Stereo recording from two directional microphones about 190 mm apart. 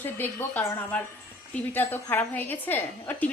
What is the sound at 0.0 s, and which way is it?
Speech, 10° left (ahead or behind).